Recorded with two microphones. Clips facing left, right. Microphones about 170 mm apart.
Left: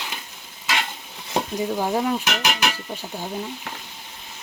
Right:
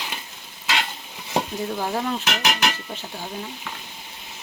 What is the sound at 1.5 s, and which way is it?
Speech, 10° left (ahead or behind).